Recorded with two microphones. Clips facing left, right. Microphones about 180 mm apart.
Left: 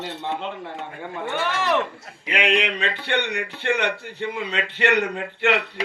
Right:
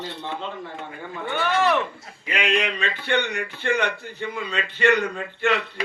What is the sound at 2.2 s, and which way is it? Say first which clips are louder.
Speech: left 2 dB; 15° left (ahead or behind).